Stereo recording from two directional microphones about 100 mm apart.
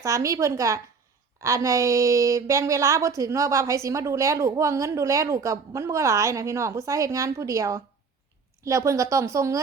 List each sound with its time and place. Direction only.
0.0 s a woman's voice: 30° right (ahead or behind)